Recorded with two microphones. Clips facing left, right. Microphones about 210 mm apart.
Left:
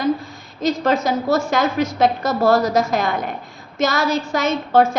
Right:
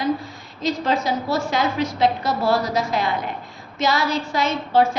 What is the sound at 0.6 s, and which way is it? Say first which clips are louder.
A woman's voice: left 4 dB; 45° left (ahead or behind).